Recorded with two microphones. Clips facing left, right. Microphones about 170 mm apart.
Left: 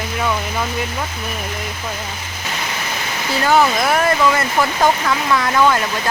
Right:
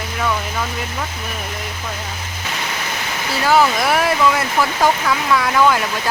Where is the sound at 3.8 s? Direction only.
5° right (ahead or behind).